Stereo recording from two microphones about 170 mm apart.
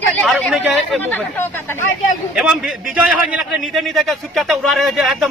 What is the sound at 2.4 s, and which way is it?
A man's voice, 5° right (ahead or behind).